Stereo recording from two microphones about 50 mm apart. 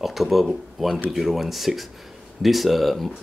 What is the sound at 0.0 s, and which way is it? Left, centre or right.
Speech, centre.